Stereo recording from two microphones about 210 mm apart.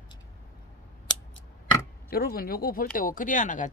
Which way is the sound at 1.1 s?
20° left (ahead or behind).